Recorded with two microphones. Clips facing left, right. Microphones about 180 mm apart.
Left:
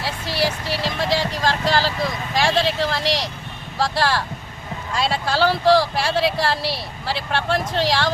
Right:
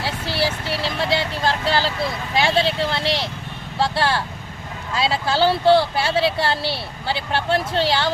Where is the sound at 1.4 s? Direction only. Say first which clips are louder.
Even; 30° right (ahead or behind).